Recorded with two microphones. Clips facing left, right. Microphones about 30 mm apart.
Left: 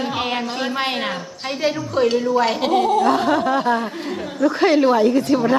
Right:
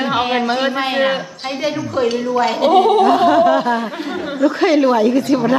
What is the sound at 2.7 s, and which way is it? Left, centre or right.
Speech, right.